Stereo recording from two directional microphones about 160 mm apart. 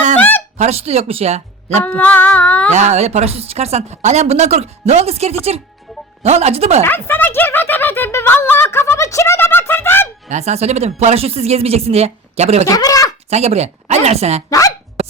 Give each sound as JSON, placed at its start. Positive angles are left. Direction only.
{"t": 0.2, "sound": "a sound", "side_deg": 10}
{"t": 0.5, "sound": "speech", "side_deg": -45}
{"t": 1.8, "sound": "speech", "side_deg": 10}
{"t": 2.7, "sound": "speech", "side_deg": -45}
{"t": 6.8, "sound": "a sound", "side_deg": 10}
{"t": 10.2, "sound": "speech", "side_deg": -45}
{"t": 12.6, "sound": "speech", "side_deg": 20}
{"t": 13.3, "sound": "speech", "side_deg": -40}